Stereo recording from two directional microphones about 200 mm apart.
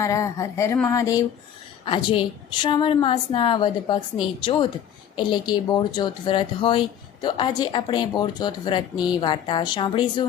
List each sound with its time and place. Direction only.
0.0 s speech: 15° left (ahead or behind)